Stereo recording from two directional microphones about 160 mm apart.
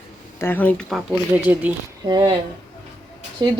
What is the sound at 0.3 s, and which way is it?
Speech, 15° left (ahead or behind).